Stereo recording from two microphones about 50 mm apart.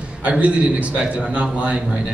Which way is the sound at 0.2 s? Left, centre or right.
Right.